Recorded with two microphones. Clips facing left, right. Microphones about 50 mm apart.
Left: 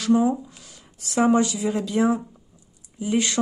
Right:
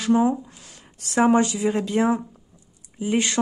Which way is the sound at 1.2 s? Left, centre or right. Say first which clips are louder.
Right 1 dB; right.